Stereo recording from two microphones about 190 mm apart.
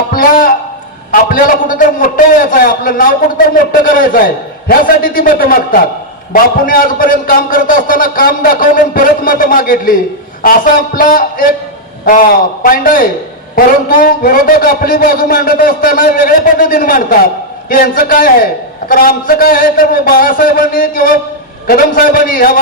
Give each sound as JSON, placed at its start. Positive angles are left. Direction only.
{"t": 0.1, "sound": "music", "side_deg": 50}
{"t": 1.1, "sound": "a man's voice", "side_deg": 50}